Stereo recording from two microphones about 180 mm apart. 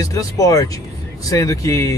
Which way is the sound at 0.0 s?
20° left (ahead or behind).